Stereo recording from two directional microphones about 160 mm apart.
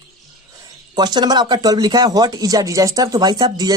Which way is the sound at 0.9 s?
25° right (ahead or behind).